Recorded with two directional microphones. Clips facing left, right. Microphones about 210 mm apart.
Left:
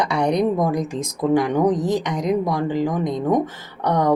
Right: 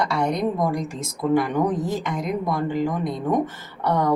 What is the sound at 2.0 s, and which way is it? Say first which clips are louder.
Speech: left 3 dB; 90° left.